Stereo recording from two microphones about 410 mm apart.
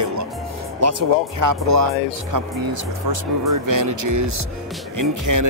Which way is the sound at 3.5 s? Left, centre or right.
Right.